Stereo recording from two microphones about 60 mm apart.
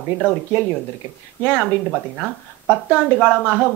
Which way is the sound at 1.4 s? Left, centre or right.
Centre.